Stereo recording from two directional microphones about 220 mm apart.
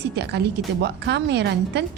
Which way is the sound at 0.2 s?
50° right (ahead or behind).